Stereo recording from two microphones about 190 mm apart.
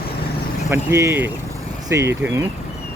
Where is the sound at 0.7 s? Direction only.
15° right (ahead or behind).